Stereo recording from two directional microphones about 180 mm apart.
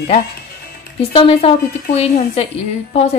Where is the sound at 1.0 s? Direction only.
30° left (ahead or behind).